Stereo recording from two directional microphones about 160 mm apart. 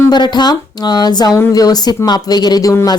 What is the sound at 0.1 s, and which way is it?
A woman's voice, 25° left (ahead or behind).